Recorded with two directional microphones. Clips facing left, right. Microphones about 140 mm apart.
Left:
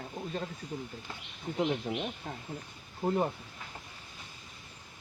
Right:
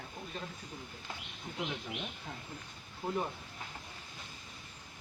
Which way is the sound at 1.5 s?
50° left (ahead or behind).